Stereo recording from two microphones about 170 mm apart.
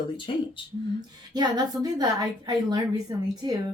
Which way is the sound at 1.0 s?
25° right (ahead or behind).